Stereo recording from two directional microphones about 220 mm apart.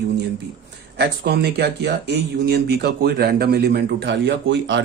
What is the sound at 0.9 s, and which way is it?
Speech, 45° right (ahead or behind).